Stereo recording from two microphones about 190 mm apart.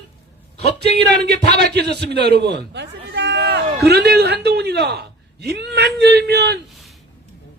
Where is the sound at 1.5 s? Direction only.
60° right (ahead or behind).